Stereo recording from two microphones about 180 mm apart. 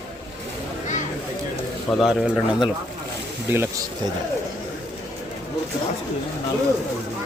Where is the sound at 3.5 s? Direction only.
15° right (ahead or behind).